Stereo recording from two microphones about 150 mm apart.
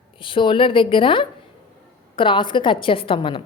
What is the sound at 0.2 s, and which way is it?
A woman's voice, 35° left (ahead or behind).